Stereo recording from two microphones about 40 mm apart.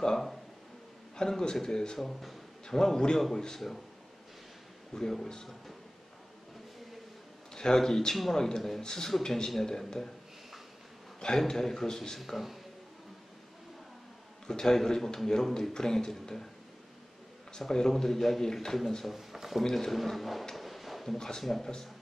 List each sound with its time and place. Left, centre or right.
1.1 s a man's voice: centre
2.0 s a man's voice: centre
4.9 s a man's voice: centre
7.5 s a man's voice: centre
11.1 s a man's voice: centre
12.2 s a man's voice: centre
14.5 s a man's voice: centre
17.5 s a man's voice: centre
19.0 s speech: centre
19.7 s a man's voice: centre
20.5 s a sound: centre
21.2 s a man's voice: centre